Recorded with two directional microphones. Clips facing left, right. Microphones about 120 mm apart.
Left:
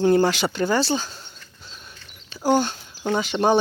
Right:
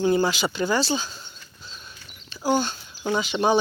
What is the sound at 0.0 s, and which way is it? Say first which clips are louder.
Speech: left 3 dB; 60° left (ahead or behind).